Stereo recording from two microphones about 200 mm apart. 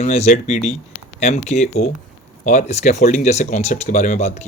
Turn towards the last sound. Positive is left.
turn(degrees=35)  # may be behind; listen again after turning